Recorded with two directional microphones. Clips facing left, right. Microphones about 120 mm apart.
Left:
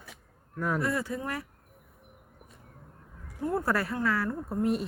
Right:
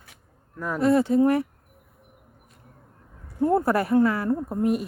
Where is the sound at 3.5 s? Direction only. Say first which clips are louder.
Right 8 dB; 25° right (ahead or behind).